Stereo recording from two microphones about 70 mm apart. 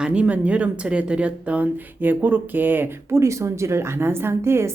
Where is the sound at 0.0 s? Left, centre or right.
Centre.